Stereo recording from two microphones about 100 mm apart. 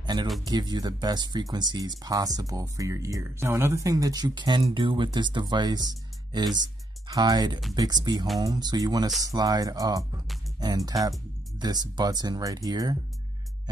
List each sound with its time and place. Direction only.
0.0 s a sound: 45° right (ahead or behind)
0.5 s speech: 45° right (ahead or behind)
4.6 s speech: 60° right (ahead or behind); by 10.2 s 35° right (ahead or behind)
11.5 s speech: 40° right (ahead or behind)